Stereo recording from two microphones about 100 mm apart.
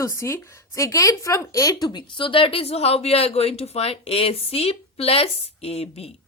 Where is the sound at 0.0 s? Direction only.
30° left (ahead or behind).